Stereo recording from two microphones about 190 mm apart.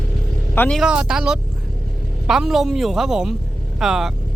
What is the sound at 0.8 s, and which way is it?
Speech, 5° right (ahead or behind).